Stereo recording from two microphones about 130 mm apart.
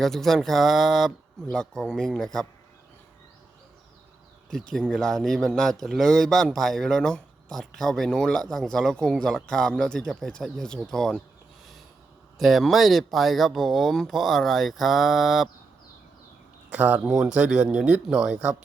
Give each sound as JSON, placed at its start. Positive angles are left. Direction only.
{"t": 0.0, "sound": "a man's voice", "side_deg": 0}
{"t": 4.7, "sound": "a man's voice", "side_deg": 5}
{"t": 12.4, "sound": "a man's voice", "side_deg": 0}
{"t": 16.6, "sound": "a man's voice", "side_deg": -15}